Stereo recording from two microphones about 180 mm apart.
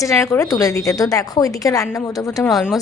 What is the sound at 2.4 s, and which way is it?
Speech, centre (ahead or behind).